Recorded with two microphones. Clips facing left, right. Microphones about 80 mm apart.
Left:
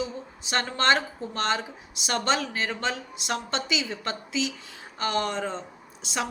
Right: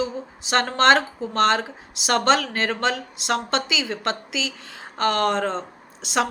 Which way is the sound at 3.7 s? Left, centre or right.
Right.